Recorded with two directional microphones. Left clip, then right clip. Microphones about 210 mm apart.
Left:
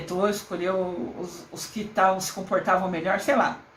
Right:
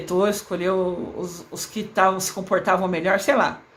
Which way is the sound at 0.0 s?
30° right (ahead or behind).